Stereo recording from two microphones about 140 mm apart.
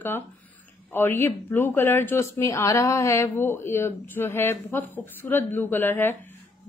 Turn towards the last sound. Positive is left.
turn(degrees=15)  # may be behind; listen again after turning